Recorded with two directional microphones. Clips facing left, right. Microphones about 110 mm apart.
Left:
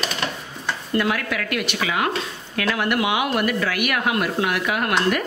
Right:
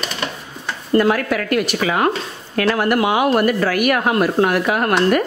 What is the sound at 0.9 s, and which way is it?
A woman's voice, 40° right (ahead or behind).